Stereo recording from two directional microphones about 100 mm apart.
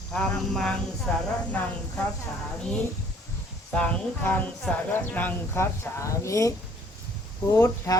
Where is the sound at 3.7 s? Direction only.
15° left (ahead or behind).